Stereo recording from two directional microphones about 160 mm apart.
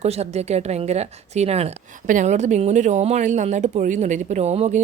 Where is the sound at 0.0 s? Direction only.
40° right (ahead or behind).